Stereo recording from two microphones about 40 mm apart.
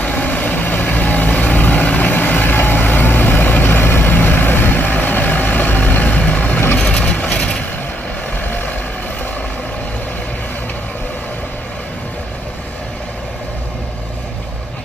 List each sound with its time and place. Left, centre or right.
0.0 s vehicle: left
2.0 s vehicle: left
6.7 s vehicle: left
8.4 s vehicle: left